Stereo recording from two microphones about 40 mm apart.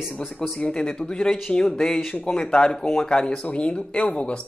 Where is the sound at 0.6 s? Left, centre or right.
Left.